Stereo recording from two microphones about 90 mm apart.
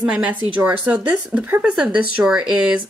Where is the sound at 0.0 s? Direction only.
15° right (ahead or behind).